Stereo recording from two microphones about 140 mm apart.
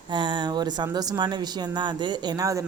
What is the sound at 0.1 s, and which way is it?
Speech, 35° right (ahead or behind).